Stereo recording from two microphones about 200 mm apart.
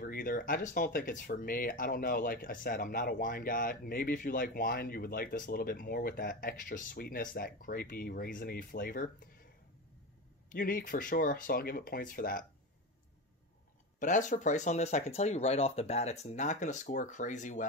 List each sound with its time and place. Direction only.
0.0 s speech: 45° left (ahead or behind)
10.5 s speech: 45° left (ahead or behind)
13.9 s speech: 40° left (ahead or behind)